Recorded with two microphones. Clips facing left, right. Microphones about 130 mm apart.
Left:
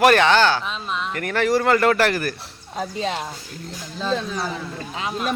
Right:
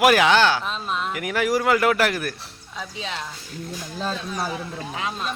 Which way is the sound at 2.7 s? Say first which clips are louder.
Left 7 dB; 45° left (ahead or behind).